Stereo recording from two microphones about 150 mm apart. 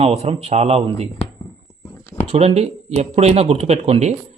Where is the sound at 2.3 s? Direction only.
45° right (ahead or behind).